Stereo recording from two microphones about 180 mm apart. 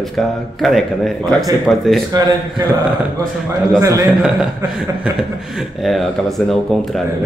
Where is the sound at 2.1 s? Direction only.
20° right (ahead or behind).